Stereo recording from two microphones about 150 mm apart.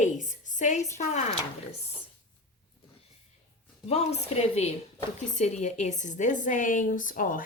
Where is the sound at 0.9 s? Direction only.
50° left (ahead or behind).